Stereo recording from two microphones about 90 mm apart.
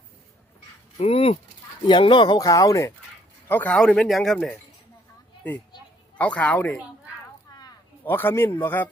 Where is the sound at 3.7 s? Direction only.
10° left (ahead or behind).